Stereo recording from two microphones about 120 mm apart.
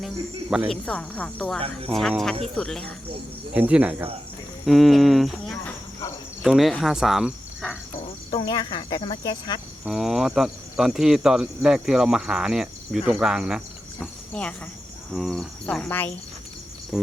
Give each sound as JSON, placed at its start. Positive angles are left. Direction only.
{"t": 0.5, "sound": "speech", "side_deg": -5}
{"t": 0.9, "sound": "speech", "side_deg": 10}
{"t": 3.5, "sound": "speech", "side_deg": -10}
{"t": 4.6, "sound": "speech", "side_deg": 0}
{"t": 6.4, "sound": "cricket", "side_deg": 0}
{"t": 8.3, "sound": "speech", "side_deg": 35}
{"t": 9.8, "sound": "speech", "side_deg": -5}
{"t": 14.0, "sound": "speech", "side_deg": 10}
{"t": 16.9, "sound": "a sound", "side_deg": 0}